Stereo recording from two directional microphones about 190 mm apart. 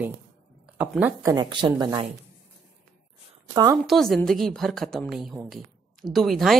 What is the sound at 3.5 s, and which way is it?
Speech, 20° right (ahead or behind).